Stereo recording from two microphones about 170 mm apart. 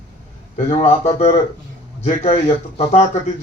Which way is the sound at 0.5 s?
40° left (ahead or behind).